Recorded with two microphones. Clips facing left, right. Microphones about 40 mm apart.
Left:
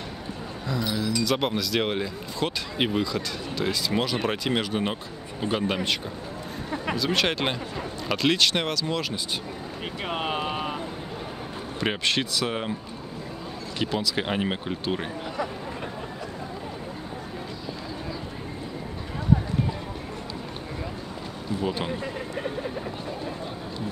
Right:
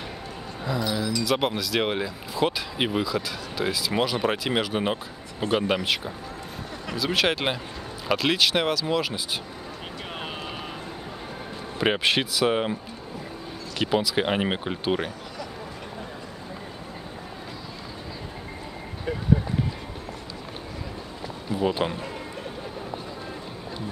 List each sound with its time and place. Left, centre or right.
0.7 s speech: centre
7.0 s speech: centre
10.1 s vehicle: left
11.8 s speech: centre
13.7 s speech: centre
21.5 s speech: centre